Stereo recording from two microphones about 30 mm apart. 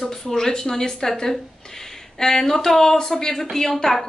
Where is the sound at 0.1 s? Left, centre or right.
Centre.